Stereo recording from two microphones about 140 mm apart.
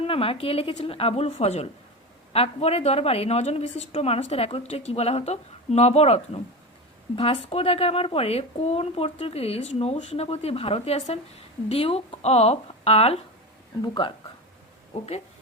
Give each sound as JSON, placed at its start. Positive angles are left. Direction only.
{"t": 0.0, "sound": "a woman's voice", "side_deg": 40}
{"t": 13.8, "sound": "speech", "side_deg": 30}